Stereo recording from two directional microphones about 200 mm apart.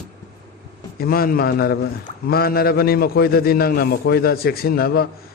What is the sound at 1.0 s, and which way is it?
A man's voice, 50° left (ahead or behind).